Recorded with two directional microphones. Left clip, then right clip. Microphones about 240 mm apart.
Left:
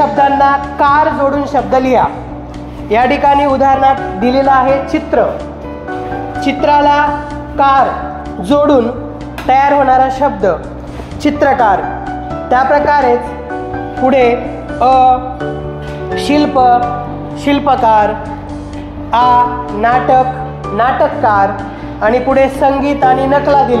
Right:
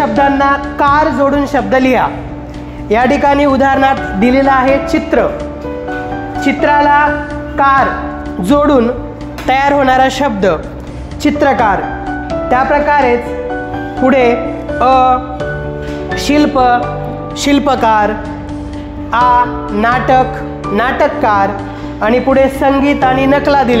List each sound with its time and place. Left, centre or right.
0.2 s speech: right
6.4 s a man's voice: right
9.5 s a man's voice: right
16.2 s a man's voice: right